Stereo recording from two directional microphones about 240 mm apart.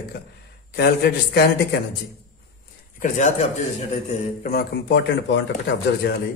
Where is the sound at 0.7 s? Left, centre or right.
Left.